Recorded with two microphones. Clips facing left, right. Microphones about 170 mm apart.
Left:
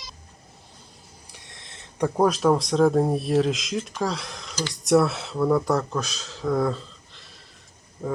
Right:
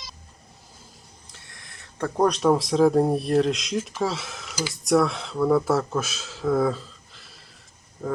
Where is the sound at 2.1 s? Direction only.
5° left (ahead or behind).